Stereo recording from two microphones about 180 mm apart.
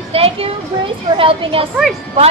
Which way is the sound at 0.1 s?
30° right (ahead or behind).